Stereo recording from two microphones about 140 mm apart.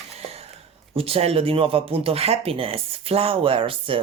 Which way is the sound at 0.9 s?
40° right (ahead or behind).